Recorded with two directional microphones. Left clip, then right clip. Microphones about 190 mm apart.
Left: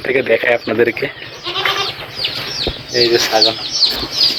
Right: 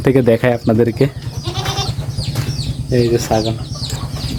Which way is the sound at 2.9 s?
5° right (ahead or behind).